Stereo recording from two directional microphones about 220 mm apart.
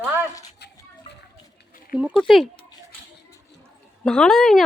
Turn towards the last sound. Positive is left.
turn(degrees=0)  # may be behind; listen again after turning